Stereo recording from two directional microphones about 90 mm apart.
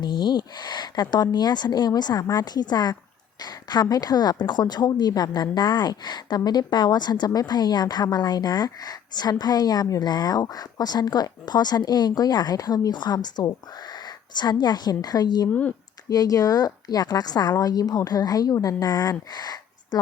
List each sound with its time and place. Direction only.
0.0 s a woman's voice: 55° left (ahead or behind)
14.6 s a woman's voice: 50° left (ahead or behind)
19.3 s a sound: 50° left (ahead or behind)